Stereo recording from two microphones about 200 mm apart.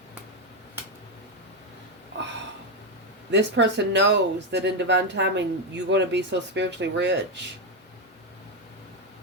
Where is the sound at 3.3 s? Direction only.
60° right (ahead or behind).